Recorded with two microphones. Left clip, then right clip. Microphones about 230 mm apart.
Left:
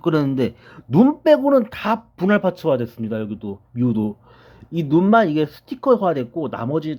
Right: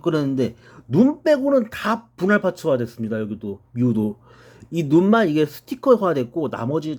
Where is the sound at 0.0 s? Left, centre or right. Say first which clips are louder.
Left 2 dB; centre.